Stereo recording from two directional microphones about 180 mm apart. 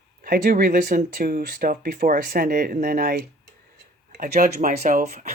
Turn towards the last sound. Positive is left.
turn(degrees=-40)  # may be behind; listen again after turning